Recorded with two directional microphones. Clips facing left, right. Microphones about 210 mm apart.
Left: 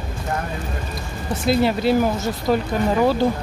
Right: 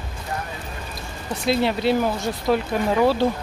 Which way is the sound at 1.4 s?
Centre (ahead or behind).